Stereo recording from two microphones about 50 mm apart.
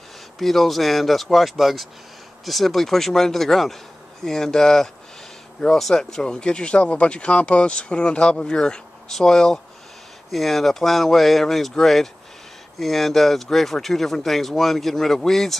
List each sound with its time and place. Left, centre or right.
0.4 s speech: centre